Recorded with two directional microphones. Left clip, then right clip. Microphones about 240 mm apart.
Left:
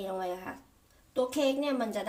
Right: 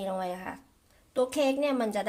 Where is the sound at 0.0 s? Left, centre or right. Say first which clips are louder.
Right 2 dB; right.